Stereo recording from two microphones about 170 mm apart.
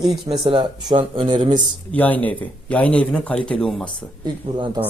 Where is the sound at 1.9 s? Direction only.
10° left (ahead or behind).